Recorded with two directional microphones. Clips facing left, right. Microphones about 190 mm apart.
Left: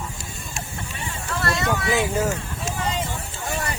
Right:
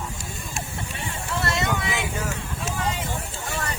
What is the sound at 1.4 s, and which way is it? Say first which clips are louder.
Vehicle: left 3 dB; 20° right (ahead or behind).